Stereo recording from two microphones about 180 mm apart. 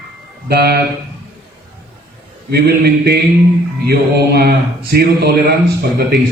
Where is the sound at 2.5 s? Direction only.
60° right (ahead or behind).